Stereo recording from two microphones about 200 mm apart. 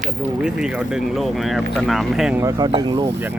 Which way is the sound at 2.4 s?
20° right (ahead or behind).